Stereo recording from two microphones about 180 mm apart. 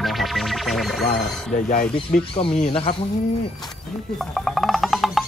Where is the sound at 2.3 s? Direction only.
35° left (ahead or behind).